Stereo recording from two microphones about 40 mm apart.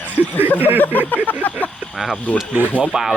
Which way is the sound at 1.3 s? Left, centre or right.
Left.